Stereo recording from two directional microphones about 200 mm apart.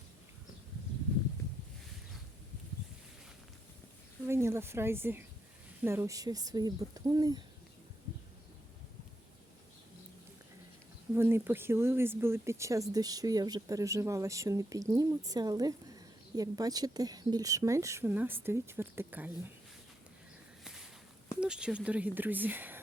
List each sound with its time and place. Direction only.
4.3 s speech: 15° right (ahead or behind)
11.1 s speech: 10° right (ahead or behind)
20.7 s walk: centre (ahead or behind)
21.4 s speech: 5° right (ahead or behind)